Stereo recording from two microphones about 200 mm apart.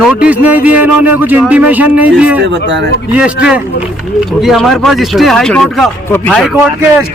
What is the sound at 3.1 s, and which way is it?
Speech, 5° right (ahead or behind).